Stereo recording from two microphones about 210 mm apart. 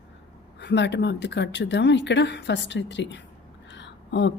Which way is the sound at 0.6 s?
55° left (ahead or behind).